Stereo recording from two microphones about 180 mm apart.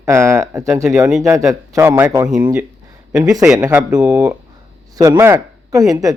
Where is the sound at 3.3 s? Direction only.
5° right (ahead or behind).